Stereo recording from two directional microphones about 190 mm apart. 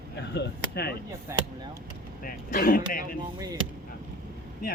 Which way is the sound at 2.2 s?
50° left (ahead or behind).